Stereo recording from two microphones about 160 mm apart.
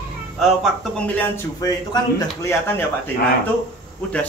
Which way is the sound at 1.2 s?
20° left (ahead or behind).